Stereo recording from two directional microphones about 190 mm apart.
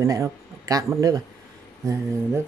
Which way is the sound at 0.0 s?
15° right (ahead or behind).